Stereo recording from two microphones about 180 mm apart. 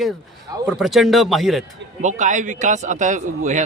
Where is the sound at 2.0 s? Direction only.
45° right (ahead or behind).